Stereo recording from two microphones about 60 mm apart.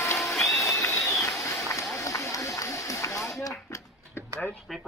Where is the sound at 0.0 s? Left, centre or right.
Left.